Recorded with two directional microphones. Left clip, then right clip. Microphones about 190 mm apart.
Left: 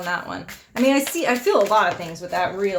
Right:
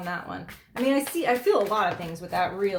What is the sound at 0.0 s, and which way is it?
Speech, 30° left (ahead or behind).